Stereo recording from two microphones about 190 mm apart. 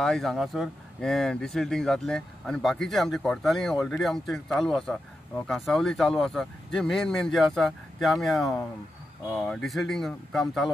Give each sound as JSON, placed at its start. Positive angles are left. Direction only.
{"t": 0.0, "sound": "speech", "side_deg": 0}